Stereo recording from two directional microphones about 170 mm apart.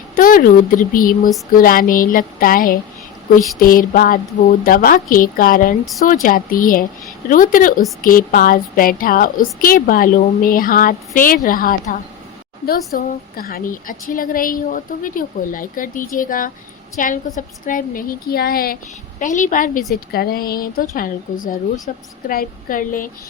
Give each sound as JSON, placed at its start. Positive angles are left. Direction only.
{"t": 0.2, "sound": "a woman's voice", "side_deg": 55}
{"t": 19.2, "sound": "a woman's voice", "side_deg": 50}